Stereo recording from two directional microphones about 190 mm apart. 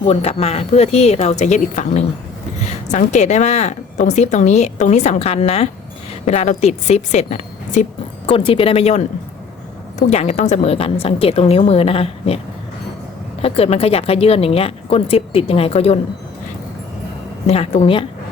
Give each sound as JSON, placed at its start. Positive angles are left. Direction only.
{"t": 0.0, "sound": "speech", "side_deg": 30}
{"t": 10.1, "sound": "speech", "side_deg": 35}
{"t": 13.4, "sound": "speech", "side_deg": 30}
{"t": 17.4, "sound": "speech", "side_deg": 35}